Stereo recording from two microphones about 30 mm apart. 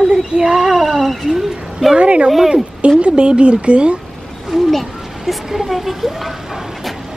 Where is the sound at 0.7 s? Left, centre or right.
Centre.